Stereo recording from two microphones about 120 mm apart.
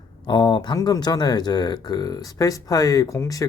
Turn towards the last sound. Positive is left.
turn(degrees=25)  # may be behind; listen again after turning